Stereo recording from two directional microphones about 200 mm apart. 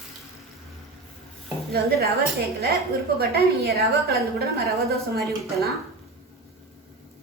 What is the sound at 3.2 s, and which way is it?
A woman's voice, 50° right (ahead or behind).